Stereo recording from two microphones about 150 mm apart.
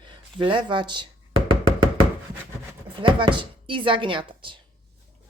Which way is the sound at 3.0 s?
35° right (ahead or behind).